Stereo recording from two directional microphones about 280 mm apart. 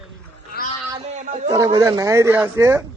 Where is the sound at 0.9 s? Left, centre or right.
Right.